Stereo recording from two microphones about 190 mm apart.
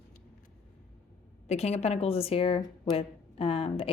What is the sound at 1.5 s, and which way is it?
A woman's voice, 35° left (ahead or behind).